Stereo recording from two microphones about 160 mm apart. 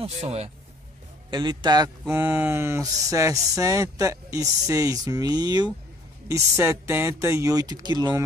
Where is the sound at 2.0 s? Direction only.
10° right (ahead or behind).